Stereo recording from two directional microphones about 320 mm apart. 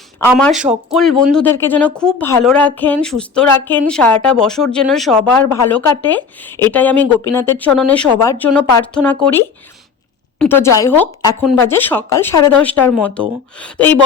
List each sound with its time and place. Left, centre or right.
0.3 s speech: centre
0.5 s speech: right
0.9 s a woman's voice: centre